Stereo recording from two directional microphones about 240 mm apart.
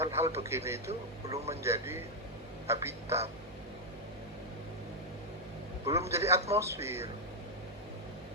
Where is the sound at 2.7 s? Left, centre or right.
Centre.